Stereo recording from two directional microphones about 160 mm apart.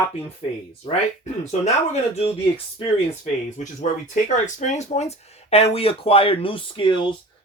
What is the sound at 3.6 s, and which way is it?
Speech, 50° left (ahead or behind).